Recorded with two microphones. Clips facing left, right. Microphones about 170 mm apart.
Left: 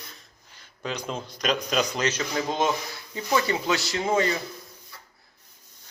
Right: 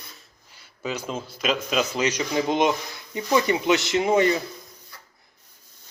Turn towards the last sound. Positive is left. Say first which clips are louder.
# right 4 dB
turn(degrees=-20)  # may be behind; listen again after turning